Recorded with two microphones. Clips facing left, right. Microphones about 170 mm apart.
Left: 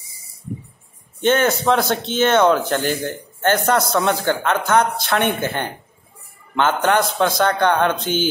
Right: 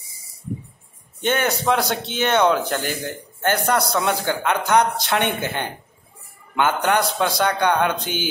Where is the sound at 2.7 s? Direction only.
45° left (ahead or behind).